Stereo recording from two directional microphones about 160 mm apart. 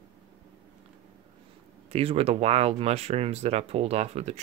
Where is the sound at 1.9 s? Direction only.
40° right (ahead or behind).